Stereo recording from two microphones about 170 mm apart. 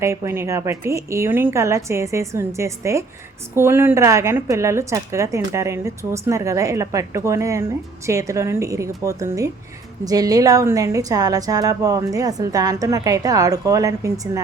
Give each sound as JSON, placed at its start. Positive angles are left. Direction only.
{"t": 0.0, "sound": "a woman's voice", "side_deg": -15}